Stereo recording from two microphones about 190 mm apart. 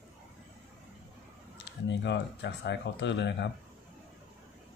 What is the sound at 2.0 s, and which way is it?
Speech, 65° left (ahead or behind).